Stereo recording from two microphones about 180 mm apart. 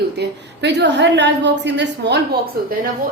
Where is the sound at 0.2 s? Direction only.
70° right (ahead or behind).